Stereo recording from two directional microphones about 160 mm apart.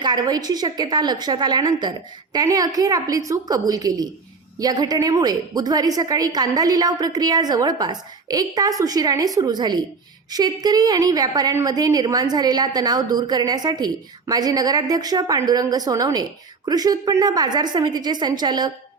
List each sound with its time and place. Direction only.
0.0 s a woman's voice: 25° right (ahead or behind)